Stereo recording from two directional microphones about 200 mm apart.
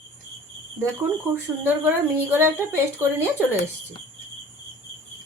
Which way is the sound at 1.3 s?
10° right (ahead or behind).